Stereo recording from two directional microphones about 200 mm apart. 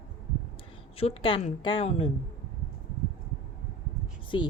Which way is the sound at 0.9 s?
25° left (ahead or behind).